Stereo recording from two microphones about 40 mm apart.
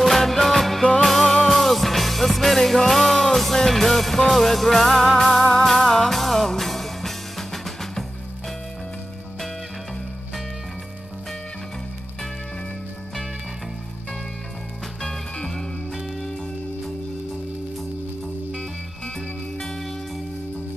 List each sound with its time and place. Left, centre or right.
0.0 s music: centre